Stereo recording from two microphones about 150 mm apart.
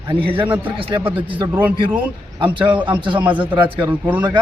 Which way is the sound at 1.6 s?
10° right (ahead or behind).